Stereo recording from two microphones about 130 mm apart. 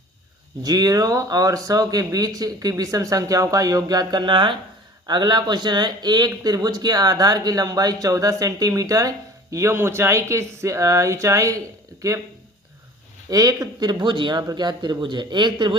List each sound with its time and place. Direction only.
0.6 s speech: 30° right (ahead or behind)
13.3 s speech: 30° right (ahead or behind)